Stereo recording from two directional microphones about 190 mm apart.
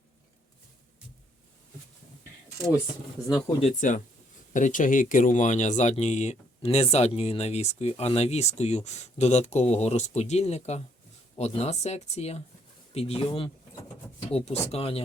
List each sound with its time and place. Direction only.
3.6 s speech: 40° left (ahead or behind)